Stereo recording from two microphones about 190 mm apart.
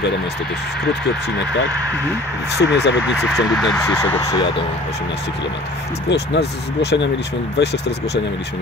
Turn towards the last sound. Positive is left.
turn(degrees=65)  # may be behind; listen again after turning